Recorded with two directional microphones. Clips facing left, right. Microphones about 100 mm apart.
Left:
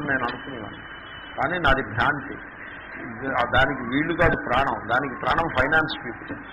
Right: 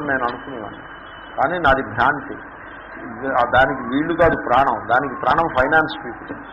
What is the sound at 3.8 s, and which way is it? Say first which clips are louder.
Speech: right 5 dB; 30° right (ahead or behind).